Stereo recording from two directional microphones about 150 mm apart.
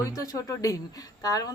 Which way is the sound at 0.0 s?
25° left (ahead or behind).